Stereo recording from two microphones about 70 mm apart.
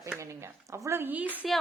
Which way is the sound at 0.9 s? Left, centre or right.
Right.